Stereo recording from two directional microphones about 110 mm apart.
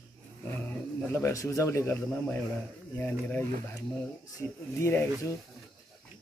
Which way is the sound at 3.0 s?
20° left (ahead or behind).